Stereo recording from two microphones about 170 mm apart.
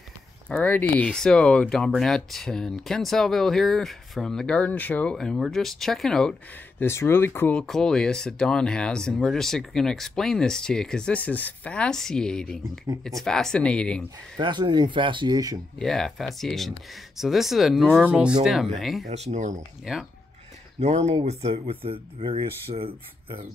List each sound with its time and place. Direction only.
0.5 s speech: 10° left (ahead or behind)
6.8 s speech: 15° left (ahead or behind)
14.4 s speech: 25° right (ahead or behind)
15.8 s speech: centre (ahead or behind)
19.0 s speech: 40° right (ahead or behind)
19.8 s speech: centre (ahead or behind)
20.8 s speech: 40° right (ahead or behind)